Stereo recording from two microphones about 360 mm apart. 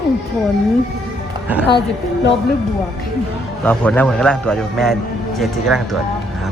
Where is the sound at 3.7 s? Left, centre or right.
Centre.